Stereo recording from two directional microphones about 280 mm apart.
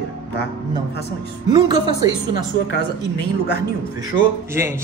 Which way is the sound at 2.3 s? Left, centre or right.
Left.